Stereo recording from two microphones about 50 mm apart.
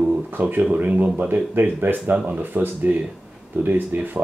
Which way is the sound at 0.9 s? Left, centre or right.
Right.